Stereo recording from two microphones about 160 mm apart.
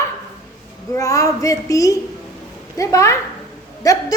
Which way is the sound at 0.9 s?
20° left (ahead or behind).